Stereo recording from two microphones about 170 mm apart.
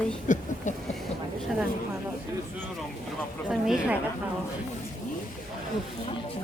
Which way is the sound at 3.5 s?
5° right (ahead or behind).